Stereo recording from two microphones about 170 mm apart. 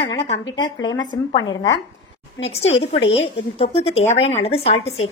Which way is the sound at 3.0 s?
90° left.